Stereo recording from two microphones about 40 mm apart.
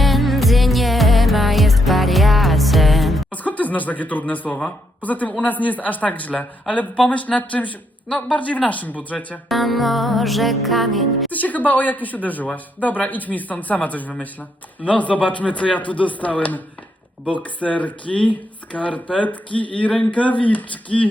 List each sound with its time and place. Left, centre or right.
0.0 s music: centre
3.3 s speech: left
8.0 s speech: left
9.5 s music: centre
11.3 s speech: left